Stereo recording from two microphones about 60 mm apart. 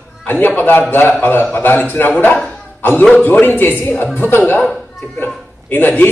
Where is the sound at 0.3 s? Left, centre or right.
Left.